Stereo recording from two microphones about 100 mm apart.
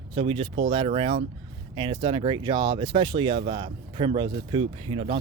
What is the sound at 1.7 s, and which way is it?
Speech, 55° right (ahead or behind).